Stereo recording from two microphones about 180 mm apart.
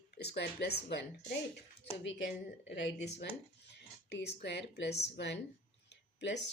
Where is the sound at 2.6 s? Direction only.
75° left (ahead or behind).